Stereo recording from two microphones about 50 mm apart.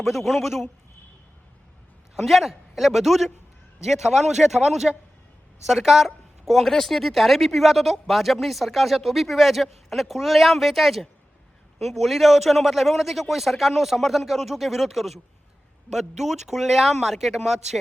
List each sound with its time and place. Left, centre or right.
0.0 s speech: centre
2.1 s speech: centre